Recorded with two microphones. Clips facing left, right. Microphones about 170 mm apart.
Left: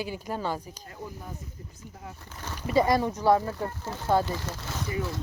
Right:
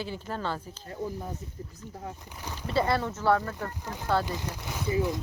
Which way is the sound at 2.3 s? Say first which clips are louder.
Even; 15° right (ahead or behind).